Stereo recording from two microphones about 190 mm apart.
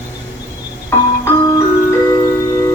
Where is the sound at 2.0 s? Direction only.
15° left (ahead or behind).